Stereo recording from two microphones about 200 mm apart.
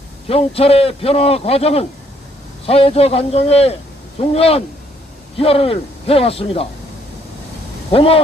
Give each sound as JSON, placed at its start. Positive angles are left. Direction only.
{"t": 0.3, "sound": "a man's voice", "side_deg": 30}
{"t": 7.9, "sound": "a man's voice", "side_deg": 30}